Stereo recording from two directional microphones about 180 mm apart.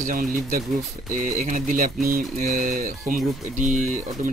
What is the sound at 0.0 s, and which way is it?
Speech, 50° right (ahead or behind).